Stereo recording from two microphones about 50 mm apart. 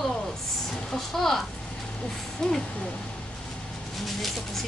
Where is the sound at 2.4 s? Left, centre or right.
Centre.